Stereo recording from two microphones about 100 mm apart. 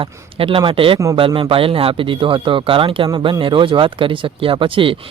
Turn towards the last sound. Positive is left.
turn(degrees=-60)  # may be behind; listen again after turning